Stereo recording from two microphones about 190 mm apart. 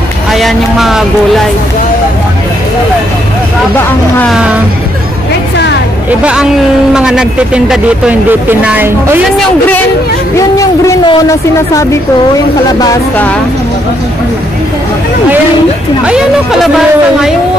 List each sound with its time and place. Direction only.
0.3 s speech: centre (ahead or behind)
4.2 s speech: 5° right (ahead or behind)
6.0 s speech: 5° right (ahead or behind)
10.3 s speech: 15° left (ahead or behind)